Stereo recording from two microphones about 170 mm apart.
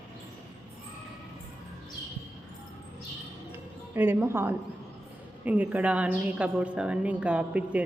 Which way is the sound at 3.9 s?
10° right (ahead or behind).